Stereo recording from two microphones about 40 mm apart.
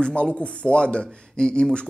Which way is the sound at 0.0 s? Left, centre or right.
Left.